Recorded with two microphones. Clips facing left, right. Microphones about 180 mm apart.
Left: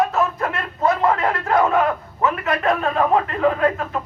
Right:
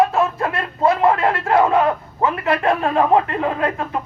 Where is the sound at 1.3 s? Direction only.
30° right (ahead or behind).